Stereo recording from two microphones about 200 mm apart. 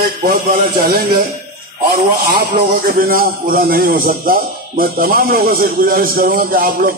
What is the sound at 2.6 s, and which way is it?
A man's voice, 45° right (ahead or behind).